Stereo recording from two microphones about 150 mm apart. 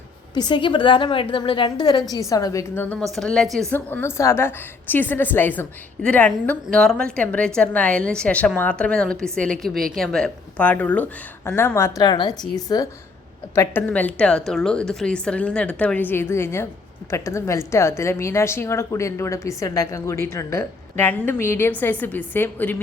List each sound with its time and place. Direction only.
0.3 s a woman's voice: 30° left (ahead or behind); by 3.0 s 15° left (ahead or behind)
3.2 s a woman's voice: centre (ahead or behind)
3.7 s a woman's voice: 15° left (ahead or behind)
13.6 s a woman's voice: 10° left (ahead or behind)